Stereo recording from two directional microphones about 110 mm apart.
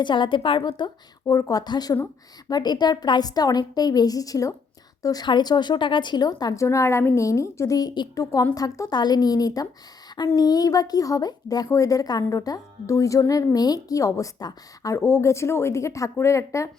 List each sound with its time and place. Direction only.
0.0 s a woman's voice: 45° left (ahead or behind)
1.3 s a woman's voice: 35° left (ahead or behind)